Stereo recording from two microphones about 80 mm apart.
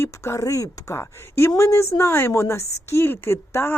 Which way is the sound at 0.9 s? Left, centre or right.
Left.